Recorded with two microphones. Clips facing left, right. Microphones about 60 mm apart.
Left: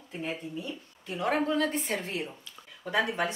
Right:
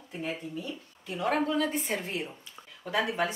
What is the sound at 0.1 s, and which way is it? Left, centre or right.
A woman's voice, centre.